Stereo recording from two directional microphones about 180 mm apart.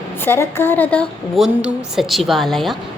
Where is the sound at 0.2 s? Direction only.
15° left (ahead or behind).